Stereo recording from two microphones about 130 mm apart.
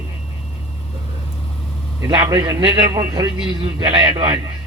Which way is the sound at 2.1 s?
30° right (ahead or behind).